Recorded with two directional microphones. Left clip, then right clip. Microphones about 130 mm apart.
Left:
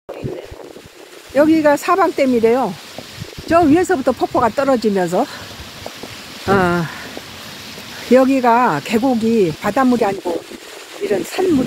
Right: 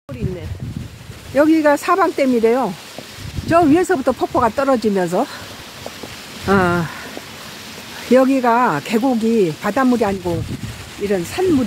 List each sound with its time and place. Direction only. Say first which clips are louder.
1.3 s speech: left 1 dB; 10° left (ahead or behind)
6.4 s speech: left 1 dB; 10° left (ahead or behind)
8.1 s speech: left 1 dB; 10° left (ahead or behind)
11.4 s speech: even; 10° left (ahead or behind)